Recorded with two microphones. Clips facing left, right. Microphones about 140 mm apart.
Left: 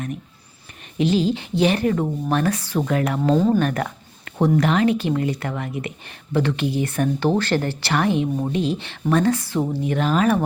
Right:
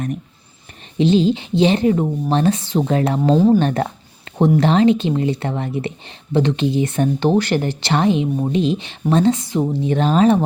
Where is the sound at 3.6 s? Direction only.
25° right (ahead or behind).